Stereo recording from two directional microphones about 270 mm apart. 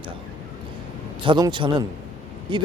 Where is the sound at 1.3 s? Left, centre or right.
Centre.